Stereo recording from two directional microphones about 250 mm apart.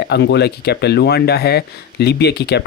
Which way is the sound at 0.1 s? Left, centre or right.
Left.